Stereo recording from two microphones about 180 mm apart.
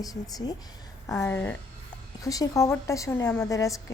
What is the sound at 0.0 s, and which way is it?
A woman's voice, 20° left (ahead or behind).